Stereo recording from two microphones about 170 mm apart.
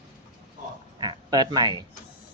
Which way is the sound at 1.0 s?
25° right (ahead or behind).